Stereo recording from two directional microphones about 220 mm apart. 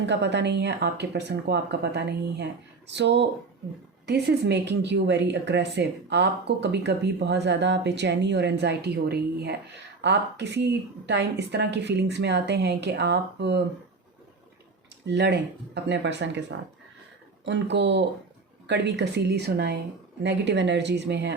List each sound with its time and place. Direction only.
0.0 s a woman's voice: 50° right (ahead or behind)
15.0 s a woman's voice: 50° right (ahead or behind)